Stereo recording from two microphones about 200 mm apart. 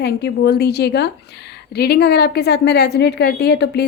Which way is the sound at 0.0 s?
55° left (ahead or behind).